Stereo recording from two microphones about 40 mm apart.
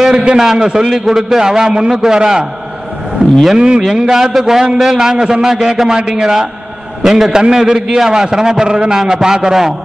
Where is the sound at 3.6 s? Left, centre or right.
Centre.